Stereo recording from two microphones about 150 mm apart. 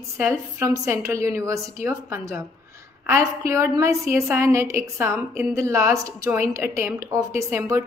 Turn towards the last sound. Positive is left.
turn(degrees=-20)  # may be behind; listen again after turning